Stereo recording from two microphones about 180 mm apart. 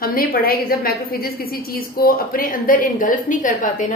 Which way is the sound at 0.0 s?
55° left (ahead or behind).